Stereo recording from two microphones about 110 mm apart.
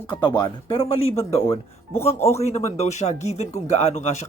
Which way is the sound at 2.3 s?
80° left.